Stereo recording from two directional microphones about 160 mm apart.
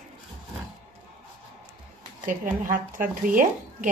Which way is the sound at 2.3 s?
55° right (ahead or behind).